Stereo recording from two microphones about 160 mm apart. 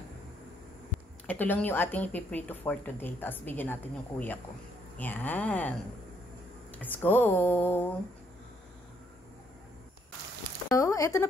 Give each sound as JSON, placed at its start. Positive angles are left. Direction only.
{"t": 1.2, "sound": "speech", "side_deg": 10}
{"t": 10.8, "sound": "speech", "side_deg": 20}